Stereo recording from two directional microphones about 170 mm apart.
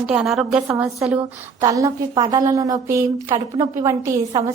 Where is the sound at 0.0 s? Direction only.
5° right (ahead or behind).